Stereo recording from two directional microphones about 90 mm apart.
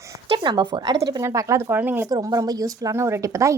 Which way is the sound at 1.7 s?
20° right (ahead or behind).